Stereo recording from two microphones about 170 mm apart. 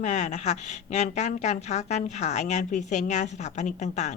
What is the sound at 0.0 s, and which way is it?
A woman's voice, 45° left (ahead or behind).